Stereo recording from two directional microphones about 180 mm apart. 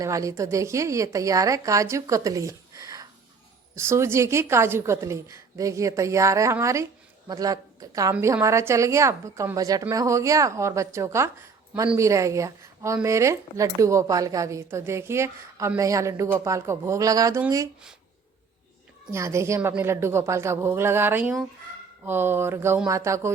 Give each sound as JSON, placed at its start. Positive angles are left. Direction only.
{"t": 0.0, "sound": "speech", "side_deg": -20}
{"t": 19.1, "sound": "speech", "side_deg": -15}